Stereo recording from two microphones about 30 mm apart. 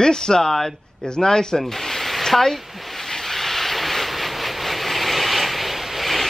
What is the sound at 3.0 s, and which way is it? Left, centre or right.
Vehicle, centre.